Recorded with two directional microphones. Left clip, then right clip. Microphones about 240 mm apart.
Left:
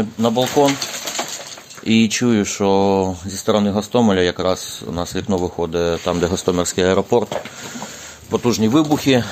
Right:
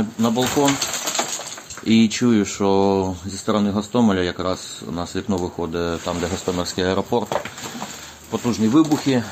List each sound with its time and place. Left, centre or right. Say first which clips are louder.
0.2 s speech: left 4 dB; left
1.9 s speech: left 1 dB; left
8.3 s speech: left 4 dB; left